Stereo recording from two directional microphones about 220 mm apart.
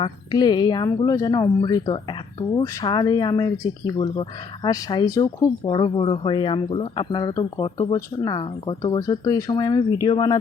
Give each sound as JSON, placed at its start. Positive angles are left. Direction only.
{"t": 0.0, "sound": "speech", "side_deg": 20}